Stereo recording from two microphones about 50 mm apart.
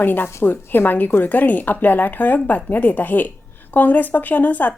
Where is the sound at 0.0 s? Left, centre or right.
Left.